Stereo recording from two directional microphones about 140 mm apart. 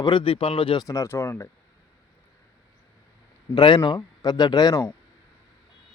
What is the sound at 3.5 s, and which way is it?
Speech, 35° left (ahead or behind).